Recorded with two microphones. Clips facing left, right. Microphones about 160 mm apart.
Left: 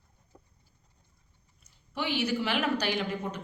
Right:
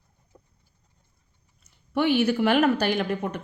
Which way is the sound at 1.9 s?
55° right (ahead or behind).